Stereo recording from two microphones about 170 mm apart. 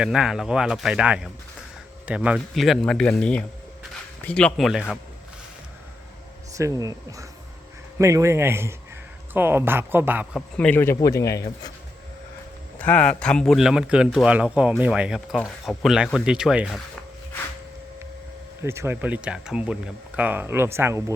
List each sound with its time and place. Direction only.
0.0 s speech: 5° right (ahead or behind)
6.6 s speech: 20° right (ahead or behind)
10.3 s a man's voice: 5° left (ahead or behind)
12.8 s speech: 5° left (ahead or behind)
18.6 s speech: 15° right (ahead or behind)